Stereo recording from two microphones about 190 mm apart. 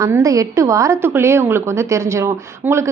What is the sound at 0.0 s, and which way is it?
A woman's voice, 15° right (ahead or behind).